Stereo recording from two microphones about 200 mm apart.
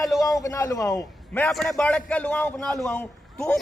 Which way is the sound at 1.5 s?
Centre (ahead or behind).